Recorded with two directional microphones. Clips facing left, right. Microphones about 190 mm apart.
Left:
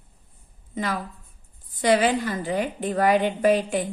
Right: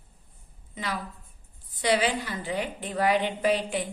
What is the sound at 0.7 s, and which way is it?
A woman's voice, 45° left (ahead or behind).